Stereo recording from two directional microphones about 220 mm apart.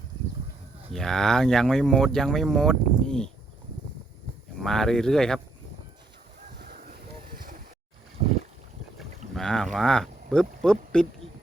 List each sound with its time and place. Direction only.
0.9 s speech: centre (ahead or behind)
4.6 s speech: centre (ahead or behind)
6.6 s a sound: 40° right (ahead or behind)
9.3 s speech: centre (ahead or behind)